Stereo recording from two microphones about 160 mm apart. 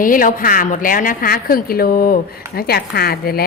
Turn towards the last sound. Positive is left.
turn(degrees=70)  # may be behind; listen again after turning